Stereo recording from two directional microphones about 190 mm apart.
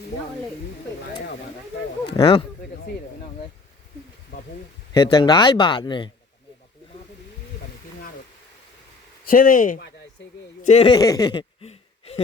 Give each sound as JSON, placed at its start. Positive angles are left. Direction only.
{"t": 2.0, "sound": "speech", "side_deg": 30}
{"t": 4.9, "sound": "speech", "side_deg": 25}
{"t": 9.2, "sound": "speech", "side_deg": 45}
{"t": 10.9, "sound": "a sound", "side_deg": 20}